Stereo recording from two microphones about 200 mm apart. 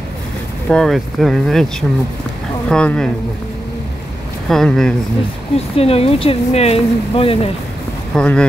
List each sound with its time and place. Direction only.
0.7 s speech: centre (ahead or behind)
4.5 s speech: centre (ahead or behind)
5.8 s speech: 30° left (ahead or behind)
8.1 s speech: 5° left (ahead or behind)